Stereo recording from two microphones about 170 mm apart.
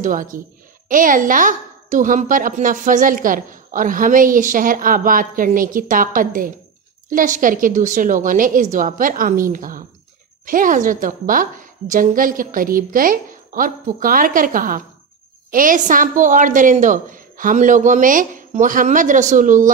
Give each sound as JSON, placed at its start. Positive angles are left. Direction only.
{"t": 0.0, "sound": "a woman's voice", "side_deg": -50}